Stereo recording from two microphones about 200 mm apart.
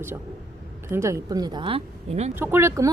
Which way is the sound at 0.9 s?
15° right (ahead or behind).